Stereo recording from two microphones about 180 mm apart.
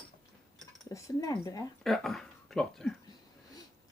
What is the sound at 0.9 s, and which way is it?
Speech, 20° left (ahead or behind).